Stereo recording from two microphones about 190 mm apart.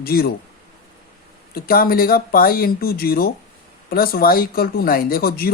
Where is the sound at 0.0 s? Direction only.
55° left (ahead or behind).